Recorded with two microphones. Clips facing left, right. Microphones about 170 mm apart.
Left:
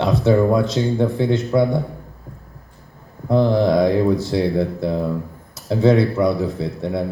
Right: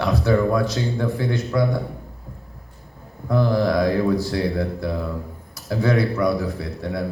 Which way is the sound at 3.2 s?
20° left (ahead or behind).